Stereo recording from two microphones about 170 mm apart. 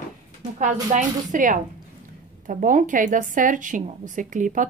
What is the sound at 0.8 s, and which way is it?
A woman's voice, 50° right (ahead or behind).